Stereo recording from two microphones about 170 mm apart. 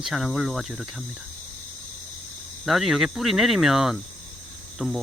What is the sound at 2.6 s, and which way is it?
Speech, centre (ahead or behind).